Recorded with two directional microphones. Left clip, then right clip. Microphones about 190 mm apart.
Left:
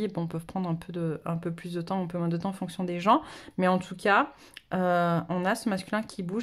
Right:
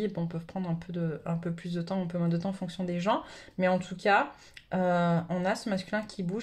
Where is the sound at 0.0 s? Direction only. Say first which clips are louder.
Left 1 dB; 35° left (ahead or behind).